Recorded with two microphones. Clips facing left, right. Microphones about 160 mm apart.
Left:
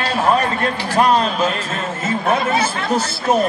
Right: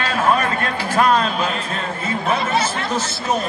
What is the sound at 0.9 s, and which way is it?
Speech, 40° left (ahead or behind).